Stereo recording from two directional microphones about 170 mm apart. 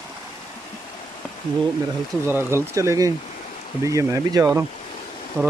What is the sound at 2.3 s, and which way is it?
Speech, 15° right (ahead or behind).